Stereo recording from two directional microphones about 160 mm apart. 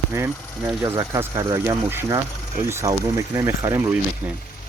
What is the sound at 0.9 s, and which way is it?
Speech, 15° right (ahead or behind).